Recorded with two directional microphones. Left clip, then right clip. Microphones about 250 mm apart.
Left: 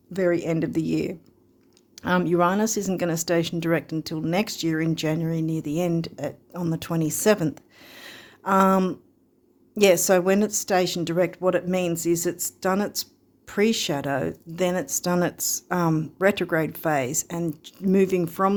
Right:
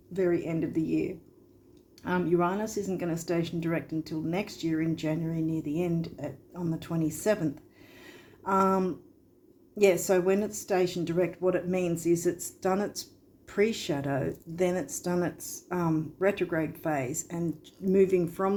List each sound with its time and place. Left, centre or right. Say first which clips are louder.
0.1 s speech: left 5 dB; left